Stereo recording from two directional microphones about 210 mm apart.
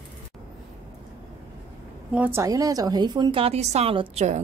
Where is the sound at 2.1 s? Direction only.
10° right (ahead or behind).